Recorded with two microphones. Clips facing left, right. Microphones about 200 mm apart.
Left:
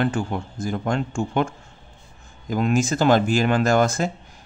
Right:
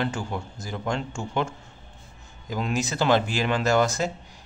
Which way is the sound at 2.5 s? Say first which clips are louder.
Left 7 dB; 50° left (ahead or behind).